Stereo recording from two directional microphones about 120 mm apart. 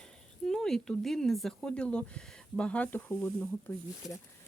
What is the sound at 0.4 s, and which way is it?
Speech, 5° left (ahead or behind).